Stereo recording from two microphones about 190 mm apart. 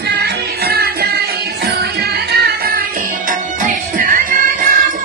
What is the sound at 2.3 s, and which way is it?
Music, 60° right (ahead or behind).